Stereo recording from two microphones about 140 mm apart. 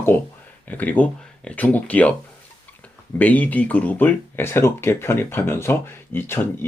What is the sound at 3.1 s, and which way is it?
Speech, 10° left (ahead or behind).